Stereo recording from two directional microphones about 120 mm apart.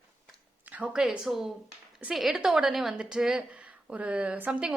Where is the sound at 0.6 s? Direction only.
10° right (ahead or behind).